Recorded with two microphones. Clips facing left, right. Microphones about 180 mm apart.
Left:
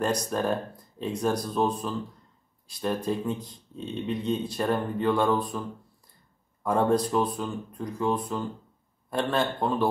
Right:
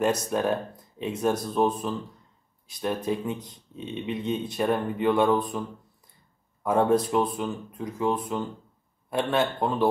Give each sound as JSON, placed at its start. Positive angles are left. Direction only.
{"t": 0.0, "sound": "speech", "side_deg": -10}
{"t": 3.0, "sound": "speech", "side_deg": -20}
{"t": 5.1, "sound": "speech", "side_deg": -20}
{"t": 6.6, "sound": "speech", "side_deg": -5}